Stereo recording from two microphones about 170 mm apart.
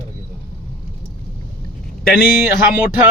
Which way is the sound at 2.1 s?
65° left (ahead or behind).